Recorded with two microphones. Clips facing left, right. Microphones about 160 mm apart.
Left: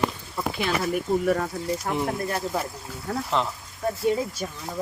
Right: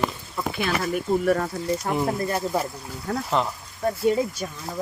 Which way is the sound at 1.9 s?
25° right (ahead or behind).